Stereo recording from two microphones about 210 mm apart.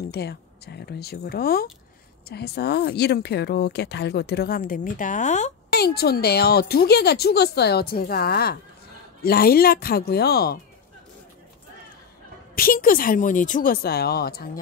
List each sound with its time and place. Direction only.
0.1 s speech: 50° left (ahead or behind); by 5.5 s 35° left (ahead or behind)
5.7 s speech: 50° left (ahead or behind)
12.5 s speech: 40° left (ahead or behind)